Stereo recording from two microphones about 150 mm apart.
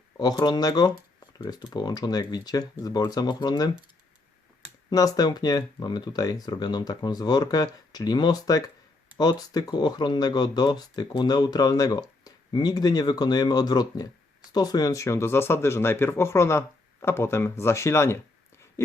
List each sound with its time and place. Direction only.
0.2 s speech: 25° left (ahead or behind)
4.9 s speech: 25° left (ahead or behind)